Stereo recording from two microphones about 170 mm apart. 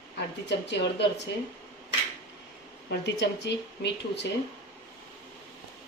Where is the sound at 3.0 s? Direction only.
90° left.